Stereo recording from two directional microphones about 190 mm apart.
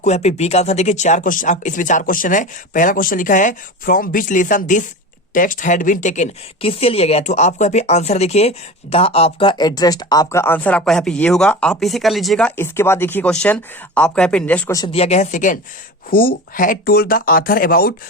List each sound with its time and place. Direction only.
0.0 s speech: 35° left (ahead or behind); by 14.8 s 5° left (ahead or behind)
14.9 s speech: 35° left (ahead or behind); by 17.9 s 50° left (ahead or behind)